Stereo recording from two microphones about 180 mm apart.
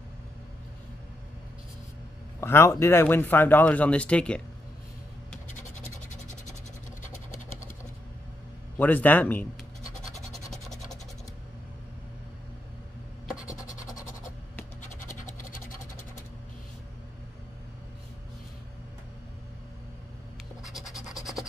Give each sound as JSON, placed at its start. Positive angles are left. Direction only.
{"t": 2.4, "sound": "speech", "side_deg": 15}
{"t": 8.7, "sound": "speech", "side_deg": 10}
{"t": 10.1, "sound": "scratch", "side_deg": 0}
{"t": 13.5, "sound": "scratch", "side_deg": 20}
{"t": 20.6, "sound": "scratch", "side_deg": 0}